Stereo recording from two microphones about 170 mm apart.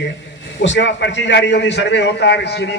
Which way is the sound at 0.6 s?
90° left.